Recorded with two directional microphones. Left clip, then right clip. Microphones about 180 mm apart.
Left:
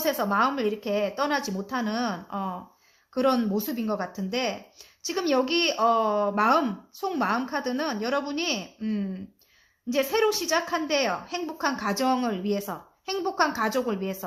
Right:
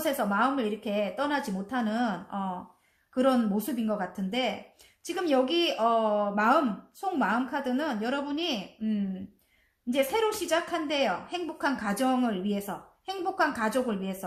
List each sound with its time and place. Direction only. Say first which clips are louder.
0.0 s a woman's voice: left 3 dB; 40° left (ahead or behind)